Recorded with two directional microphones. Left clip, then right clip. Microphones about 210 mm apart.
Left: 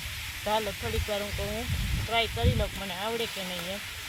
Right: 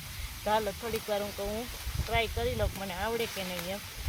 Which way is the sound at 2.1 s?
5° right (ahead or behind).